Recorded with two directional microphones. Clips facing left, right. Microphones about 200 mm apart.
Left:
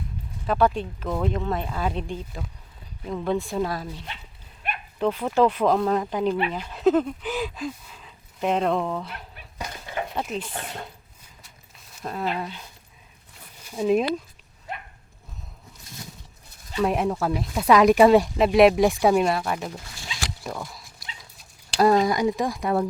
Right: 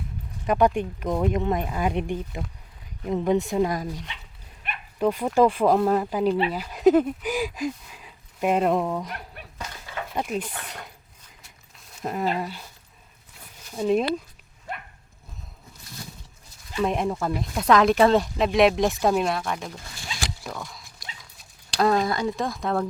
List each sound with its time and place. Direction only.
0.4 s speech: 15° right (ahead or behind)
9.6 s a sound: 20° left (ahead or behind)
10.2 s speech: 10° right (ahead or behind)
10.5 s speech: 25° left (ahead or behind)
12.0 s speech: 15° right (ahead or behind)
13.7 s speech: 5° left (ahead or behind)
16.8 s speech: 5° left (ahead or behind)